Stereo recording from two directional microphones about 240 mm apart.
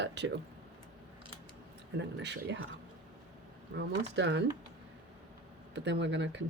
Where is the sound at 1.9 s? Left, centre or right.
Right.